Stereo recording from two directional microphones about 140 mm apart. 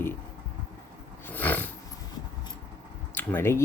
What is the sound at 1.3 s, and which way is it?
Roar, 10° left (ahead or behind).